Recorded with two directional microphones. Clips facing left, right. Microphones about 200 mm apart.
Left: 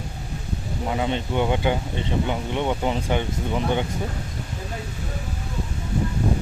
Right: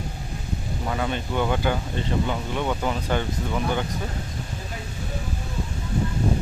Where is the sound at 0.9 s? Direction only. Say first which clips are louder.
Left 2 dB; 20° left (ahead or behind).